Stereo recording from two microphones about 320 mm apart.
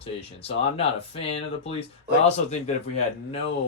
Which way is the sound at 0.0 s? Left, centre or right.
Centre.